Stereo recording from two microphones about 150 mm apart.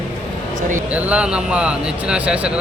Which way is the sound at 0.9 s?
5° right (ahead or behind).